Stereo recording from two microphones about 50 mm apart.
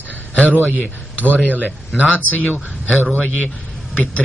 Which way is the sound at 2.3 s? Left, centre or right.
Left.